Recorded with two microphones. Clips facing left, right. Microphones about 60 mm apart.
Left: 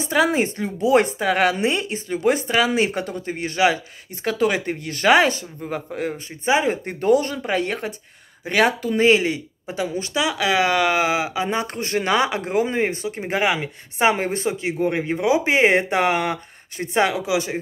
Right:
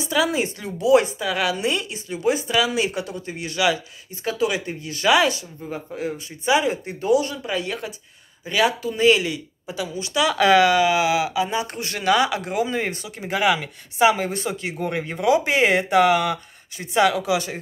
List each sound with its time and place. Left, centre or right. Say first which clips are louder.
0.0 s speech: left 3 dB; left
1.0 s speech: left 4 dB; left
4.2 s speech: left 2 dB; left
5.9 s speech: left 1 dB; left
6.4 s speech: left 1 dB; left
10.3 s speech: right 8 dB; centre
10.7 s speech: right 1 dB; left
17.1 s speech: even; left